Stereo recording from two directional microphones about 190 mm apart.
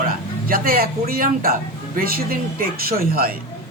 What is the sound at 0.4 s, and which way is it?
Speech, 50° right (ahead or behind).